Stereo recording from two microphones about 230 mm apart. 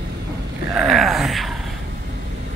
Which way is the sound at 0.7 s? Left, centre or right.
Centre.